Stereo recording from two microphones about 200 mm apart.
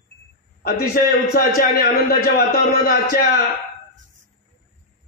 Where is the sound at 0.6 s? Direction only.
50° left (ahead or behind).